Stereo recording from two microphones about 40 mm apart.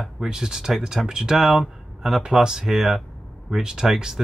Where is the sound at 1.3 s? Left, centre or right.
Centre.